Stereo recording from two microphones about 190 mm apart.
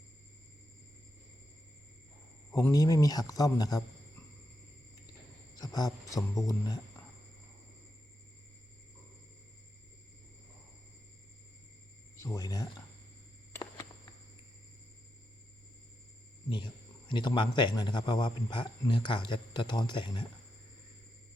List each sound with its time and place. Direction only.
2.6 s a man's voice: 15° left (ahead or behind)
5.5 s a man's voice: 20° left (ahead or behind)
12.1 s speech: 20° left (ahead or behind)
13.5 s a sound: 20° left (ahead or behind)
17.1 s a man's voice: 25° left (ahead or behind)